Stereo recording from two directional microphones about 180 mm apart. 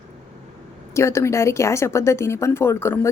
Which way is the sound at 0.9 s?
15° left (ahead or behind).